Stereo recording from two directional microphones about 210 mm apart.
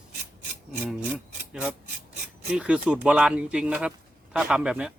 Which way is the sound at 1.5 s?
Centre (ahead or behind).